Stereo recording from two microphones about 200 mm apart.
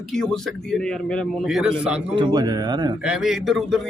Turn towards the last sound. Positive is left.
turn(degrees=0)  # may be behind; listen again after turning